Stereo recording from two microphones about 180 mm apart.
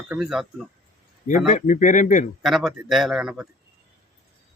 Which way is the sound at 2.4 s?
Centre (ahead or behind).